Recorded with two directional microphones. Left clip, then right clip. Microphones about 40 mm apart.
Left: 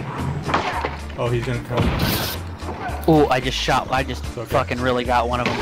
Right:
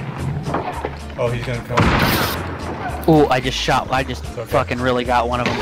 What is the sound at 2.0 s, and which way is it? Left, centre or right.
Speech, centre.